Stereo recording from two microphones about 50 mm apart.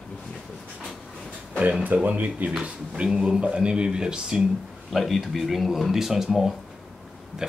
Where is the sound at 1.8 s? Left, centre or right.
Right; by 4.4 s centre.